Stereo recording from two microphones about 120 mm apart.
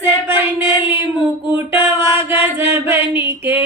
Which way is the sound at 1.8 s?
20° right (ahead or behind).